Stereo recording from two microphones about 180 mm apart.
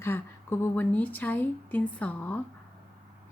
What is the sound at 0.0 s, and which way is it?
Speech, 15° left (ahead or behind).